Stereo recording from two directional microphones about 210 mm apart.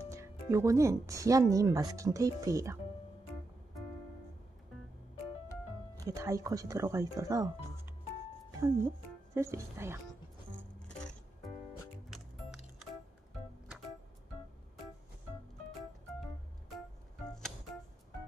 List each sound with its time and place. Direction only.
0.1 s speech: 15° right (ahead or behind)
5.9 s speech: 15° right (ahead or behind)